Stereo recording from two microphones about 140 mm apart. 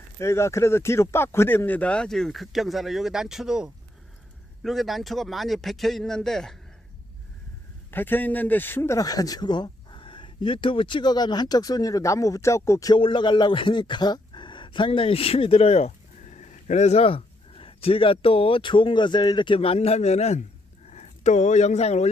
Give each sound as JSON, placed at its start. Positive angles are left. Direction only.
{"t": 0.2, "sound": "a man's voice", "side_deg": 20}
{"t": 7.9, "sound": "a man's voice", "side_deg": 15}
{"t": 13.0, "sound": "a man's voice", "side_deg": 35}